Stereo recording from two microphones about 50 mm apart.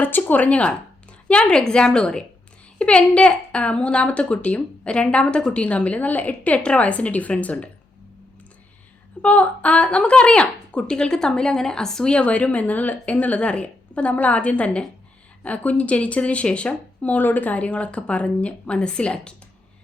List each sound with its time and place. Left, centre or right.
0.2 s a woman's voice: left
9.2 s a woman's voice: left